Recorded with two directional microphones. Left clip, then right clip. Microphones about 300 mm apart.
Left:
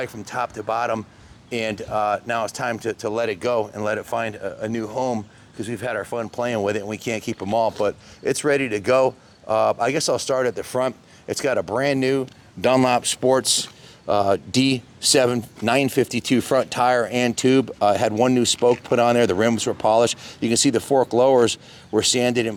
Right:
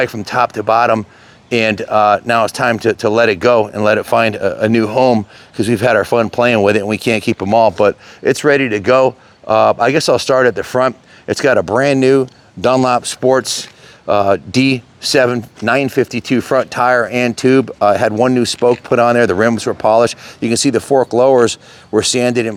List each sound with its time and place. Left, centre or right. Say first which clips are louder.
0.0 s speech: right 12 dB; right
6.3 s speech: right 9 dB; right
12.6 s speech: right 5 dB; centre